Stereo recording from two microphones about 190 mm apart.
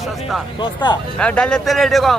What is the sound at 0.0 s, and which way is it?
Music, centre (ahead or behind).